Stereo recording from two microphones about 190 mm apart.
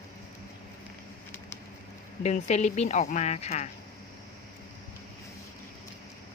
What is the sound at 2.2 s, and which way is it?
Speech, 35° left (ahead or behind).